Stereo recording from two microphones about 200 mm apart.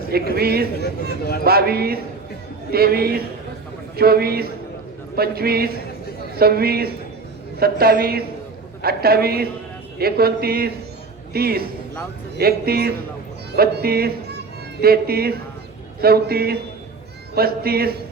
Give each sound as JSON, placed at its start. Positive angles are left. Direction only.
{"t": 0.3, "sound": "a man's voice", "side_deg": -50}